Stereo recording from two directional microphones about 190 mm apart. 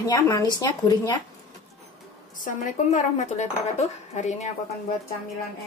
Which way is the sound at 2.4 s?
40° left (ahead or behind).